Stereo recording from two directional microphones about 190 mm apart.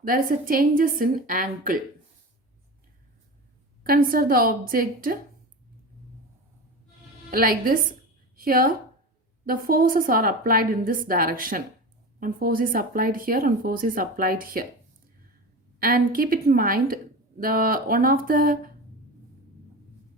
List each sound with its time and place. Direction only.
0.0 s speech: 50° right (ahead or behind)
3.8 s speech: 50° right (ahead or behind)
7.3 s a woman's voice: 50° right (ahead or behind)
15.8 s speech: 50° right (ahead or behind)